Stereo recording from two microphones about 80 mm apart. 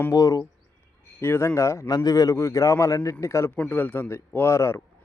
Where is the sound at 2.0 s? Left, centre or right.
Left.